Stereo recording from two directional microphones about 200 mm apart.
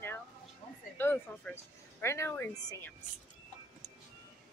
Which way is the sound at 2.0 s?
15° left (ahead or behind).